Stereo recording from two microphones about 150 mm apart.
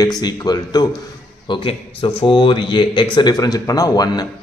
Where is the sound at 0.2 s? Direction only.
25° left (ahead or behind).